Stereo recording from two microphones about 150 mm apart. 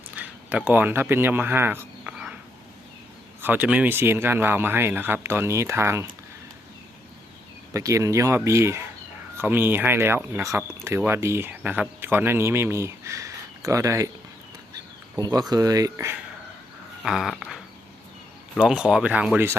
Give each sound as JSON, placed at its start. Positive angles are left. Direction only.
{"t": 0.2, "sound": "speech", "side_deg": -10}
{"t": 3.4, "sound": "speech", "side_deg": -10}
{"t": 7.7, "sound": "speech", "side_deg": -20}
{"t": 15.2, "sound": "speech", "side_deg": -25}
{"t": 17.0, "sound": "dog", "side_deg": 0}
{"t": 18.5, "sound": "speech", "side_deg": -5}